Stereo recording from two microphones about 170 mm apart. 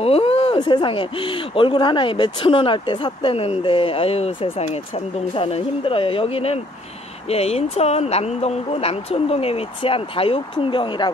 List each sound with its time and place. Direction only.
0.0 s speech: 35° left (ahead or behind)